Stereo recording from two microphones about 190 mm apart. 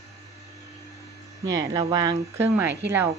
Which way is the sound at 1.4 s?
20° right (ahead or behind).